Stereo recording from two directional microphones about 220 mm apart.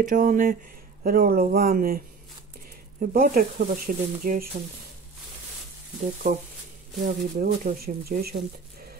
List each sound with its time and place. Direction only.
0.0 s speech: 40° right (ahead or behind)
3.0 s speech: 40° right (ahead or behind)
7.0 s speech: 40° right (ahead or behind)